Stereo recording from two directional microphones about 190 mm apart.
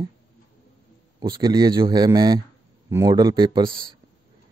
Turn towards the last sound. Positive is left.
turn(degrees=-25)  # may be behind; listen again after turning